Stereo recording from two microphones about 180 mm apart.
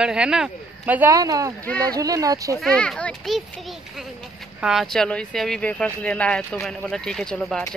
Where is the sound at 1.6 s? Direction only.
5° left (ahead or behind).